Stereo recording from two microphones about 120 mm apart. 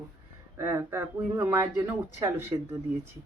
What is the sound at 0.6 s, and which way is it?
Speech, 20° right (ahead or behind).